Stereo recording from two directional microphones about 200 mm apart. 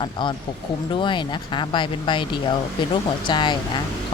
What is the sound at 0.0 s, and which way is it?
Speech, 25° left (ahead or behind).